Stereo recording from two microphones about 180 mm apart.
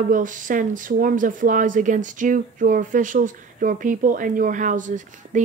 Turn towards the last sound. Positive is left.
turn(degrees=-45)  # may be behind; listen again after turning